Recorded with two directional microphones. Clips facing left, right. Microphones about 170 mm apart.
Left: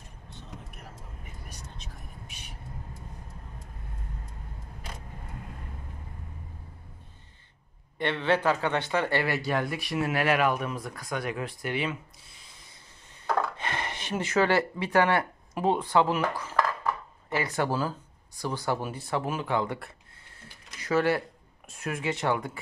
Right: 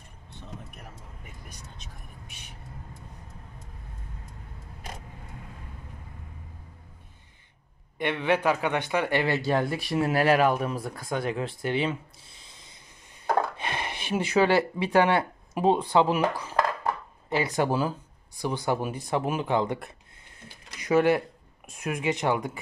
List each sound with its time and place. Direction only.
8.0 s speech: 15° right (ahead or behind)
13.6 s speech: 15° right (ahead or behind)